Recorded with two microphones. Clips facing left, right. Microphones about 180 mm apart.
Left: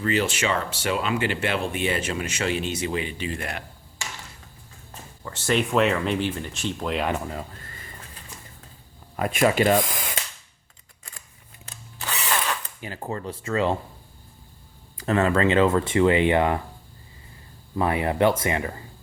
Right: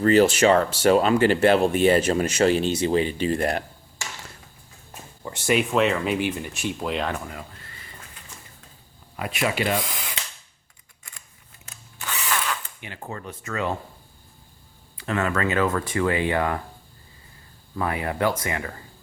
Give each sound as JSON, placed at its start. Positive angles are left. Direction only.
{"t": 0.0, "sound": "speech", "side_deg": -40}
{"t": 5.2, "sound": "speech", "side_deg": -15}
{"t": 5.7, "sound": "speech", "side_deg": 0}
{"t": 6.1, "sound": "speech", "side_deg": -10}
{"t": 7.1, "sound": "speech", "side_deg": 30}
{"t": 7.6, "sound": "bird", "side_deg": 45}
{"t": 9.1, "sound": "speech", "side_deg": 45}
{"t": 10.2, "sound": "mechanisms", "side_deg": 45}
{"t": 11.6, "sound": "drill", "side_deg": 35}
{"t": 14.9, "sound": "speech", "side_deg": 35}
{"t": 17.7, "sound": "speech", "side_deg": 25}